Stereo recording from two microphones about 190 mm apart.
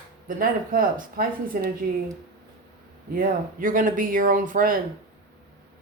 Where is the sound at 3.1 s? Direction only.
45° right (ahead or behind).